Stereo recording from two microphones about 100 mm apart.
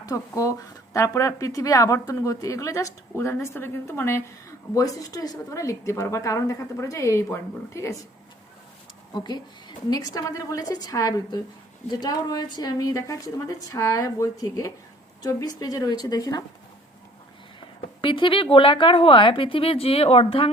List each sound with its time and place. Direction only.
0.0 s a woman's voice: 40° left (ahead or behind)
4.7 s a woman's voice: 35° left (ahead or behind)
9.1 s a woman's voice: 45° left (ahead or behind)
17.7 s a woman's voice: 60° left (ahead or behind)